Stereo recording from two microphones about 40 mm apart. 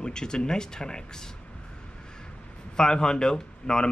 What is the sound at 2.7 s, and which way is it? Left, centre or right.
Speech, centre.